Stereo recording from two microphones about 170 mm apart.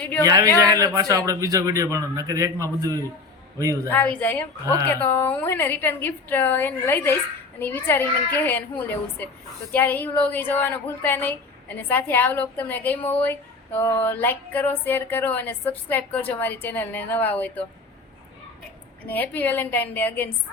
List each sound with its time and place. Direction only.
0.0 s a man's voice: 10° left (ahead or behind)
0.3 s a man's voice: 20° right (ahead or behind)
3.8 s speech: 10° left (ahead or behind)
4.6 s a man's voice: 20° right (ahead or behind)
4.9 s speech: 10° left (ahead or behind)
19.0 s speech: 10° left (ahead or behind)